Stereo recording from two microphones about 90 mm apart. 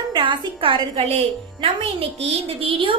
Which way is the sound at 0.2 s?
75° right (ahead or behind).